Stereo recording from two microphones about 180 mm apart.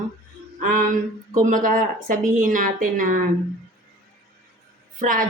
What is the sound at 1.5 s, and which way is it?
A man's voice, 45° right (ahead or behind).